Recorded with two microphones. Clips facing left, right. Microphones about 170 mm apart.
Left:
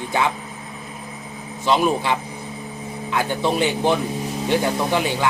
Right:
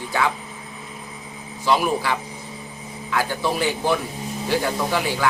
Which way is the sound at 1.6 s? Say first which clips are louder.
Left 2 dB; 20° left (ahead or behind).